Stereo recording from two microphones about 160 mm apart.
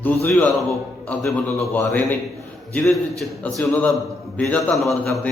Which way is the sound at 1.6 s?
20° left (ahead or behind).